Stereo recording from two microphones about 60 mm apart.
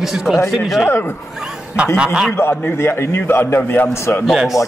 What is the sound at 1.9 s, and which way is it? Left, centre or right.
Speech, centre.